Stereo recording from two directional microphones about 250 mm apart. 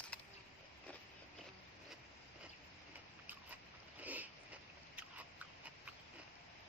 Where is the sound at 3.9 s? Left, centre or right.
Centre.